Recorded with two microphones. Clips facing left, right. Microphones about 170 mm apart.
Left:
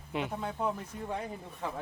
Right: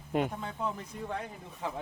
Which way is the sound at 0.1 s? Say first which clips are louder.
Right 5 dB; 45° right (ahead or behind).